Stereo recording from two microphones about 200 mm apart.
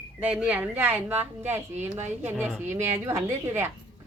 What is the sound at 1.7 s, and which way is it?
Speech, 35° right (ahead or behind).